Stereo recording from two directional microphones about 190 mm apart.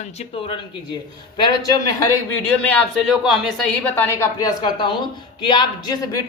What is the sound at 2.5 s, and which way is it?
Speech, 10° left (ahead or behind).